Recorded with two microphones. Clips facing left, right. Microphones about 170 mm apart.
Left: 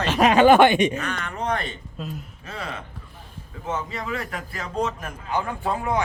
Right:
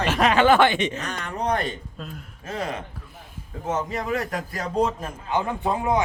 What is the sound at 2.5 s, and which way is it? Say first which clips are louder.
A man's voice: right 5 dB; 45° right (ahead or behind).